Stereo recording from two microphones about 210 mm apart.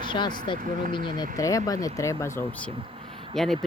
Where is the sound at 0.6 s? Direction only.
40° right (ahead or behind).